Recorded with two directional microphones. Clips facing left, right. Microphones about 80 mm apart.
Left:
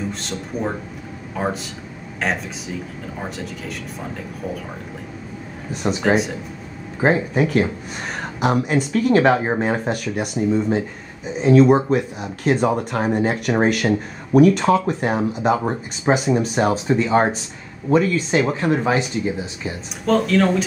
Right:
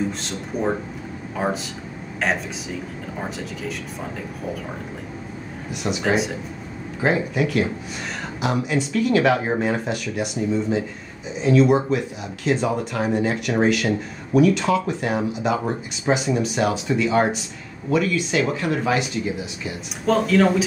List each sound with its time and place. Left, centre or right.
1.4 s speech: centre
5.7 s speech: left
6.0 s speech: centre
7.0 s speech: left
20.1 s speech: centre